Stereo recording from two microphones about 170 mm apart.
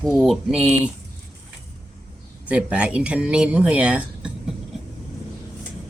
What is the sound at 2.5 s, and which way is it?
Speech, 5° right (ahead or behind).